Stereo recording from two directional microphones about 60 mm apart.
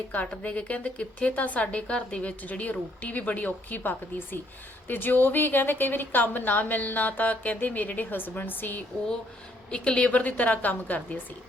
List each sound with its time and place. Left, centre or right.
0.1 s a woman's voice: left
9.6 s a woman's voice: centre